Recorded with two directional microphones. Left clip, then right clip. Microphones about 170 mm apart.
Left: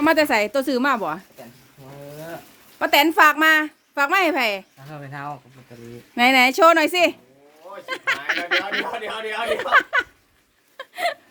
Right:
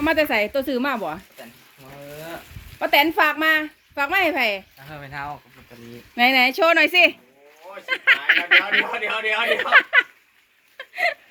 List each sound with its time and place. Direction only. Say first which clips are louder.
0.0 s speech: left 2 dB; 10° left (ahead or behind)
2.7 s a woman's voice: left 2 dB; 5° left (ahead or behind)
10.8 s whimper: right 2 dB; 20° left (ahead or behind)